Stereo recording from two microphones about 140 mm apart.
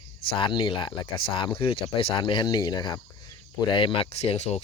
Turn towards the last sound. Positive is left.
turn(degrees=50)  # may be behind; listen again after turning